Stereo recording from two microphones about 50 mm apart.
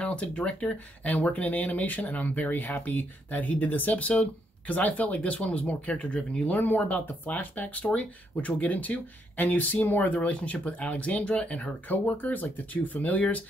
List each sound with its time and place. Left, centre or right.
0.0 s speech: left